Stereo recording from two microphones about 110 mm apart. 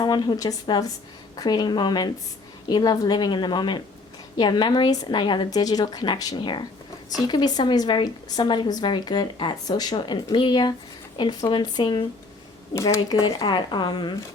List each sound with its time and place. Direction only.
0.0 s a woman's voice: 40° left (ahead or behind)
12.7 s a woman's voice: 30° left (ahead or behind)